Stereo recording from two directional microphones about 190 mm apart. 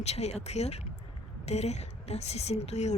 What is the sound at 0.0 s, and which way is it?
A woman's voice, 35° left (ahead or behind).